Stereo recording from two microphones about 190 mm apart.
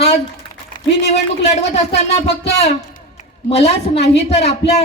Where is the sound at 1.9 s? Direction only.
35° left (ahead or behind).